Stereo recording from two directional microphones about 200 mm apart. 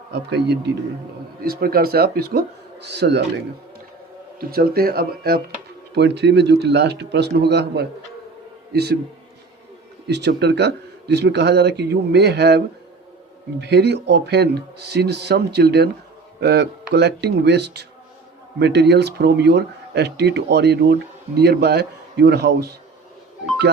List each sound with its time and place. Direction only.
0.1 s speech: 60° right (ahead or behind)
4.4 s a man's voice: 50° right (ahead or behind)
10.1 s speech: 55° right (ahead or behind)